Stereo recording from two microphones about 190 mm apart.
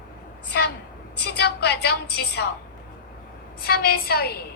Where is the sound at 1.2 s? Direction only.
60° left (ahead or behind).